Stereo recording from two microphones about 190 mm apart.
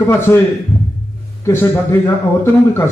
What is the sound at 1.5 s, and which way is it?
A man's voice, 10° left (ahead or behind).